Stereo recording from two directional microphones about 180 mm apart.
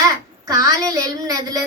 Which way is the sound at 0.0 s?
20° right (ahead or behind).